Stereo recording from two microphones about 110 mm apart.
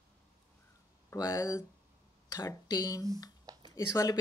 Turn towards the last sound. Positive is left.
turn(degrees=30)  # may be behind; listen again after turning